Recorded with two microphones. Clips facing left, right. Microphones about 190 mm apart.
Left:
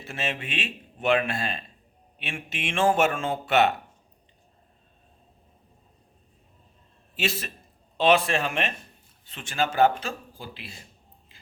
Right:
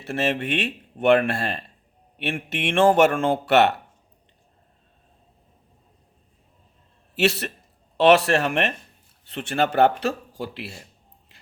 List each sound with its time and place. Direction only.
0.0 s speech: 60° right (ahead or behind)
7.2 s speech: 70° right (ahead or behind)